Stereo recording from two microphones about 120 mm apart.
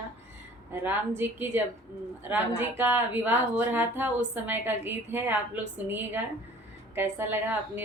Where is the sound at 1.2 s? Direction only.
20° right (ahead or behind).